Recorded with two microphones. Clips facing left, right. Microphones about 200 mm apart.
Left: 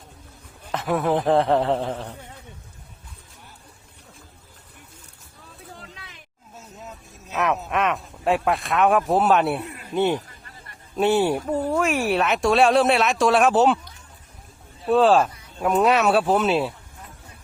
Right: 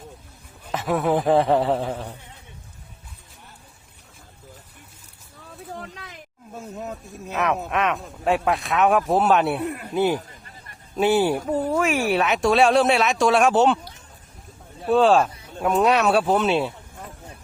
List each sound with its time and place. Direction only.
0.7 s speech: centre (ahead or behind)
5.9 s snake: 45° right (ahead or behind)
7.3 s speech: centre (ahead or behind)
9.6 s a sound: 55° right (ahead or behind)
9.9 s speech: 5° right (ahead or behind)
14.8 s speech: centre (ahead or behind)